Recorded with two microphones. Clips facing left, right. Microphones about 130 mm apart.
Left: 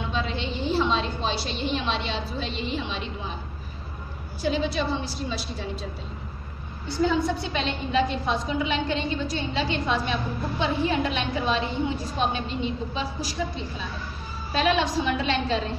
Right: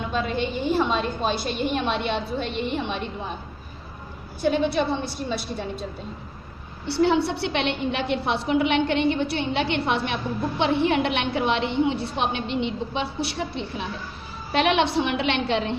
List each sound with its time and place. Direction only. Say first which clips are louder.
0.1 s a woman's voice: right 6 dB; 50° right (ahead or behind)
4.4 s a woman's voice: right 4 dB; 55° right (ahead or behind)
6.9 s a woman's voice: right 3 dB; 70° right (ahead or behind)